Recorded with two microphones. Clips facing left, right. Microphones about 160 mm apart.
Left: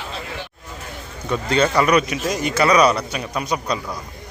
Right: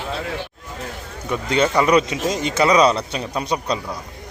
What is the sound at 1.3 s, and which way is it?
Speech, 20° right (ahead or behind).